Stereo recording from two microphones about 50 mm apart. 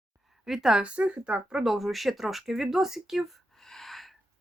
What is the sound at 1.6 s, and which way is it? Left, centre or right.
Speech, centre.